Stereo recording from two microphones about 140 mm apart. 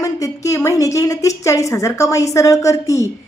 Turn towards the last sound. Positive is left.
turn(degrees=20)  # may be behind; listen again after turning